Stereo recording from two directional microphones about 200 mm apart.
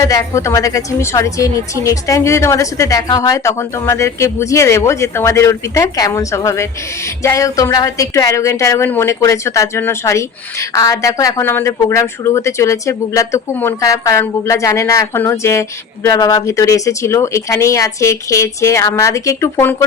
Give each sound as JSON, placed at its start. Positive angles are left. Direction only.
{"t": 0.0, "sound": "a woman's voice", "side_deg": 15}